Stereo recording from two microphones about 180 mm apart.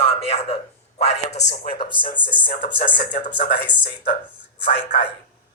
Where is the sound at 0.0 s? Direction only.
35° left (ahead or behind).